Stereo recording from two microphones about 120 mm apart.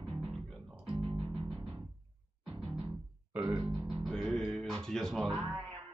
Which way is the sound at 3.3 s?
15° right (ahead or behind).